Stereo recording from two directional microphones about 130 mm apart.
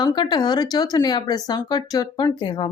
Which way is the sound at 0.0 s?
35° left (ahead or behind).